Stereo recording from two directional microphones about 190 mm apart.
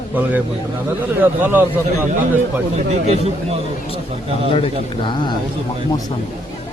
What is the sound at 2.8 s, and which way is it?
Speech, 35° right (ahead or behind).